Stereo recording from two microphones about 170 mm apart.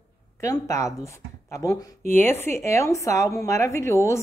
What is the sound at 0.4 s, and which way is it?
Speech, 20° left (ahead or behind).